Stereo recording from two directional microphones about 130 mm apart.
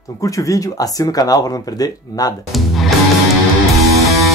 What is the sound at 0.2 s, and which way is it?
Speech, 25° left (ahead or behind).